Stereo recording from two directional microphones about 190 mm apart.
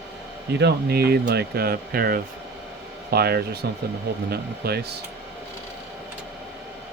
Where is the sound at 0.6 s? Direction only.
60° right (ahead or behind).